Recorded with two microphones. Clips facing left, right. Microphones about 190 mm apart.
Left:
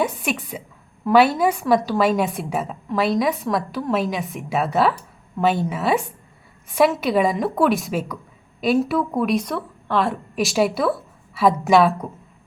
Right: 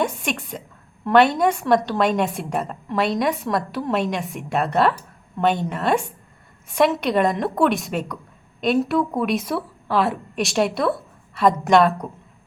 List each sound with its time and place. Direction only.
0.0 s a woman's voice: 5° left (ahead or behind)